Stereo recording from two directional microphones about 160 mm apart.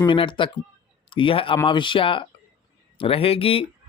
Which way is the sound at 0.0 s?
30° left (ahead or behind).